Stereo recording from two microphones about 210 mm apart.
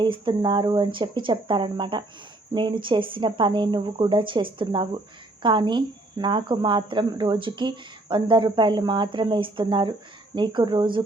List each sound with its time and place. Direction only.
0.0 s speech: 20° right (ahead or behind)